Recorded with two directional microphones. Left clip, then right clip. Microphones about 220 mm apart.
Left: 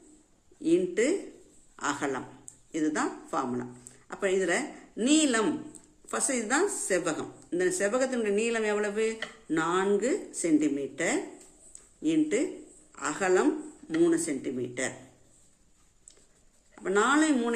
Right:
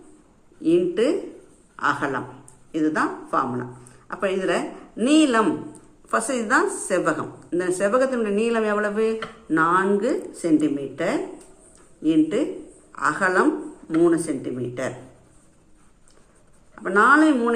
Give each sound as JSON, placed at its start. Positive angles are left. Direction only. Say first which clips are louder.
{"t": 0.6, "sound": "speech", "louder": "right 6 dB", "side_deg": 45}
{"t": 7.5, "sound": "a woman's voice", "louder": "right 6 dB", "side_deg": 45}
{"t": 16.7, "sound": "speech", "louder": "right 9 dB", "side_deg": 45}